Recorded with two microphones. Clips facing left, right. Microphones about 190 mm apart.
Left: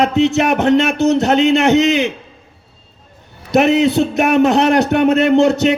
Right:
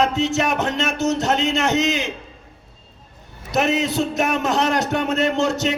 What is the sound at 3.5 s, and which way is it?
A man's voice, 60° left (ahead or behind).